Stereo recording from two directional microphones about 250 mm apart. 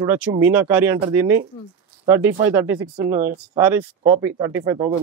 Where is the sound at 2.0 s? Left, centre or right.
Centre.